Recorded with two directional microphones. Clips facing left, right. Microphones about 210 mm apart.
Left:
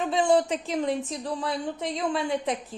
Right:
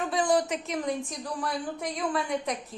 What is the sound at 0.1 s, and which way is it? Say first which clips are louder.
A woman's voice: left 4 dB; 25° left (ahead or behind).